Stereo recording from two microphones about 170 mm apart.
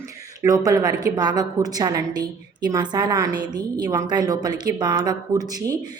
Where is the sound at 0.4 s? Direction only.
20° right (ahead or behind).